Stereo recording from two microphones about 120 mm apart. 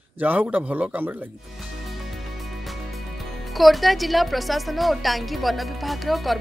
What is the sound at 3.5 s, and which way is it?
Speech, centre (ahead or behind).